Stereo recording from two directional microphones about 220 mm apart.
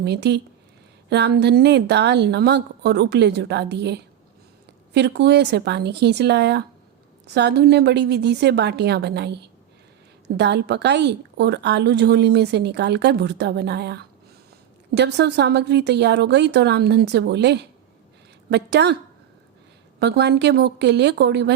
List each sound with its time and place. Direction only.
0.0 s a woman's voice: 50° right (ahead or behind)
20.0 s a woman's voice: 50° right (ahead or behind)